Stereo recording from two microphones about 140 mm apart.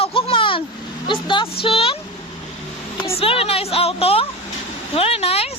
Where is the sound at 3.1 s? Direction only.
45° left (ahead or behind).